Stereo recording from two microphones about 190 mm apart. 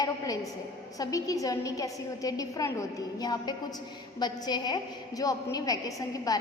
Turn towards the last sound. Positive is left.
turn(degrees=20)  # may be behind; listen again after turning